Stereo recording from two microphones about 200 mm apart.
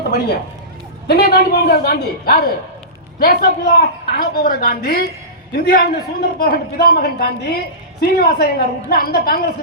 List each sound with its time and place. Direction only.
1.0 s a man's voice: 50° left (ahead or behind)